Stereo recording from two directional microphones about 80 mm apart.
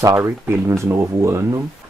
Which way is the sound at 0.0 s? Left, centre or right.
Right.